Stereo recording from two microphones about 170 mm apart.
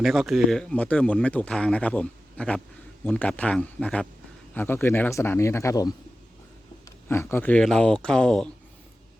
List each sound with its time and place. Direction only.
0.0 s speech: centre (ahead or behind); by 5.9 s 20° left (ahead or behind)
7.1 s speech: 15° left (ahead or behind)